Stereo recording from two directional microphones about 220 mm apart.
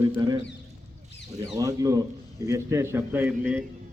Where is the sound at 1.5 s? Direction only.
15° right (ahead or behind).